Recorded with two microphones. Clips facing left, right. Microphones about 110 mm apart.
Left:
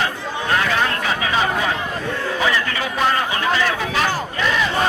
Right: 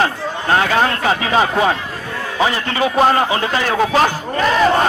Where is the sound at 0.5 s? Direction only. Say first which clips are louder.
Right 5 dB; 45° right (ahead or behind).